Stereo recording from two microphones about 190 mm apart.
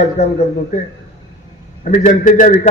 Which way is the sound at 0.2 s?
35° left (ahead or behind).